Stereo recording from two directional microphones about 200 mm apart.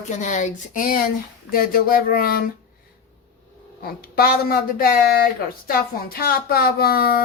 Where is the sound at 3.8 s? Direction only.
50° left (ahead or behind).